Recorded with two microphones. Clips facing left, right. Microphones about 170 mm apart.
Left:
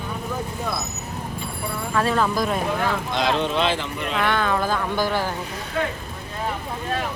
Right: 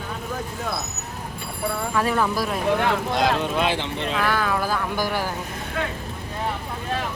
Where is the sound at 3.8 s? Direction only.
30° right (ahead or behind).